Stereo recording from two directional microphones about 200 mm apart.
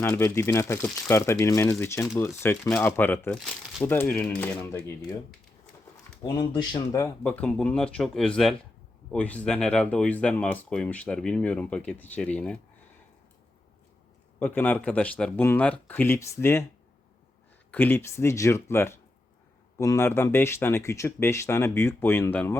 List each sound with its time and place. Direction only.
0.0 s speech: 10° left (ahead or behind)
6.2 s speech: 20° left (ahead or behind)
7.2 s speech: 10° left (ahead or behind)
14.3 s speech: 10° left (ahead or behind)
17.7 s speech: 10° left (ahead or behind)